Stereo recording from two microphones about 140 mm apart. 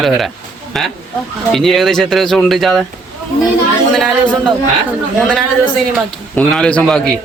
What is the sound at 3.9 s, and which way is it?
A man's voice, 5° left (ahead or behind).